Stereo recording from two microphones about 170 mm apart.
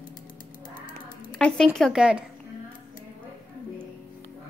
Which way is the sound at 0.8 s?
55° left (ahead or behind).